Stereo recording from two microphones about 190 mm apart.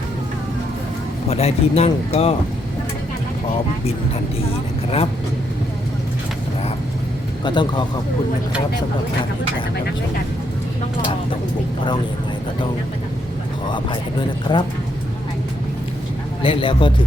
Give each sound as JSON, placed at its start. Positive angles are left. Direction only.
{"t": 1.3, "sound": "speech", "side_deg": 35}
{"t": 7.4, "sound": "a man's voice", "side_deg": 25}
{"t": 13.7, "sound": "a man's voice", "side_deg": 25}
{"t": 16.4, "sound": "a man's voice", "side_deg": 25}